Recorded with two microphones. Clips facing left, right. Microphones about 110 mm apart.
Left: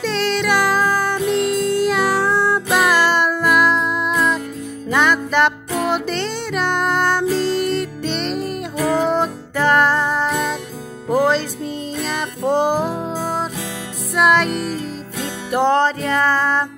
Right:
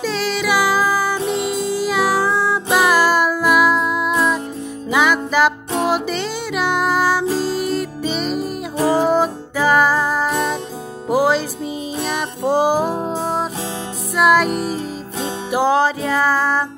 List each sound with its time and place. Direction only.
0.0 s music: 5° right (ahead or behind)
8.7 s music: 30° right (ahead or behind)
9.1 s music: 5° right (ahead or behind)
13.1 s music: 25° right (ahead or behind)
14.1 s music: 5° right (ahead or behind)
15.5 s music: 5° right (ahead or behind)